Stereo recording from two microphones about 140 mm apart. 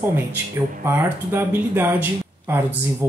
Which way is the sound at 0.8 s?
15° right (ahead or behind).